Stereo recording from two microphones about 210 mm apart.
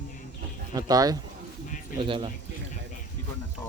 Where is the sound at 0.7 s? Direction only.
15° right (ahead or behind).